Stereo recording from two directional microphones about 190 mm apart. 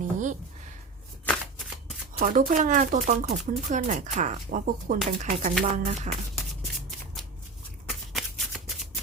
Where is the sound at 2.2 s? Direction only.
40° right (ahead or behind).